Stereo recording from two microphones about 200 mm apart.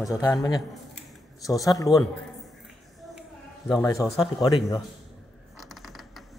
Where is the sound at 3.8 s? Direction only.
15° left (ahead or behind).